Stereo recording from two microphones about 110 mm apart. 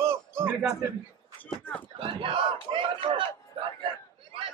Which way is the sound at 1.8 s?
50° right (ahead or behind).